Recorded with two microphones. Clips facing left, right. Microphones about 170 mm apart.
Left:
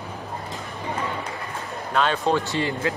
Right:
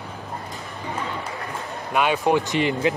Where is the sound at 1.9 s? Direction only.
15° right (ahead or behind).